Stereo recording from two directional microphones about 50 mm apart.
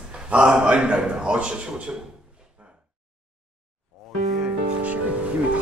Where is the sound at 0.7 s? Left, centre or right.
Centre.